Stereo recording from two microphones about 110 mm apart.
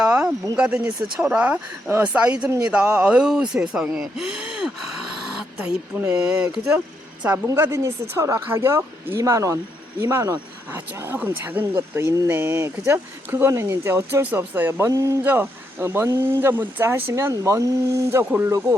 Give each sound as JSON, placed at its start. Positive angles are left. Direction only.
{"t": 0.0, "sound": "a sound", "side_deg": -10}
{"t": 0.5, "sound": "speech", "side_deg": -10}
{"t": 7.4, "sound": "speech", "side_deg": -25}
{"t": 15.2, "sound": "speech", "side_deg": -20}